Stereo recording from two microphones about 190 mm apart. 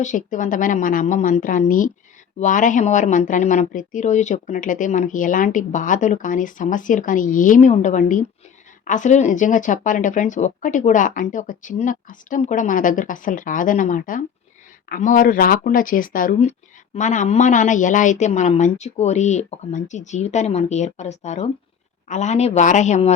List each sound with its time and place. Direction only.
0.0 s a woman's voice: 40° left (ahead or behind)